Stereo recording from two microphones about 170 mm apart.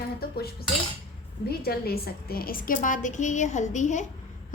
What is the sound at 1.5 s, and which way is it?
A woman's voice, 65° left (ahead or behind).